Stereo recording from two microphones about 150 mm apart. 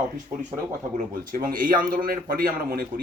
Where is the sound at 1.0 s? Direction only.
65° right (ahead or behind).